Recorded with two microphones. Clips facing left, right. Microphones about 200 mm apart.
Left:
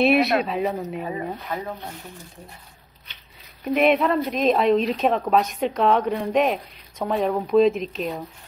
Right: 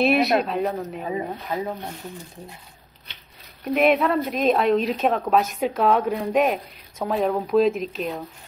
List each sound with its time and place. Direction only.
0.0 s speech: centre (ahead or behind)
1.1 s speech: 20° right (ahead or behind)
3.6 s speech: centre (ahead or behind)